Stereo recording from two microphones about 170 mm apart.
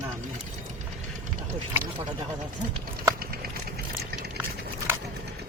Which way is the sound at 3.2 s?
65° right (ahead or behind).